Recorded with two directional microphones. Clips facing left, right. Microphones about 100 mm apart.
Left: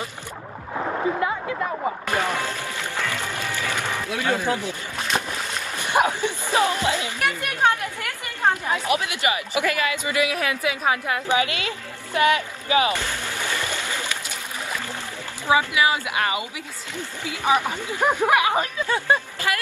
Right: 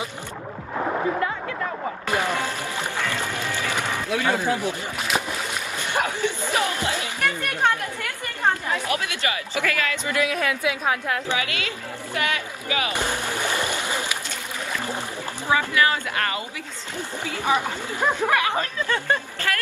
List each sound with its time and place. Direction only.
0.7 s splash: centre (ahead or behind)
1.2 s a sound: 15° left (ahead or behind)
2.0 s music: 15° right (ahead or behind)
3.9 s speech: 15° right (ahead or behind)
5.8 s a sound: 15° left (ahead or behind)
8.6 s speech: 20° left (ahead or behind)
10.1 s a woman's voice: 5° left (ahead or behind)
11.3 s speech: 20° left (ahead or behind)
12.9 s music: 15° right (ahead or behind)
15.4 s speech: 15° left (ahead or behind)